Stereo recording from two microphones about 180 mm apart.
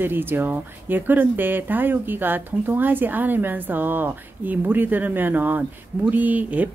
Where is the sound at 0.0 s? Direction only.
10° right (ahead or behind).